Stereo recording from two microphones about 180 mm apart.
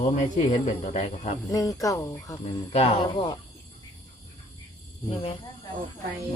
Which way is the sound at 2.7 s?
35° left (ahead or behind).